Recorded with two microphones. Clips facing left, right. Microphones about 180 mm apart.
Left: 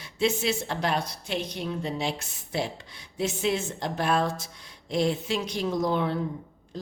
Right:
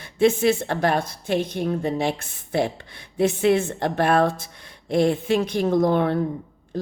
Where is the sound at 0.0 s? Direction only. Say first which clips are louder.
Right 8 dB; 55° right (ahead or behind).